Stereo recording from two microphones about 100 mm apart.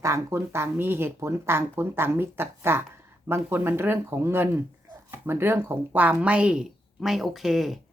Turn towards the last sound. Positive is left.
turn(degrees=0)  # may be behind; listen again after turning